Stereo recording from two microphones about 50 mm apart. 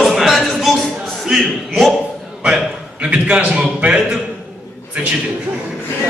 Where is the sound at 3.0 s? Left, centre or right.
Right.